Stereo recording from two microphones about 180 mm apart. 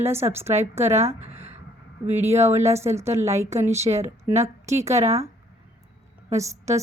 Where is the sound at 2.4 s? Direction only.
15° right (ahead or behind).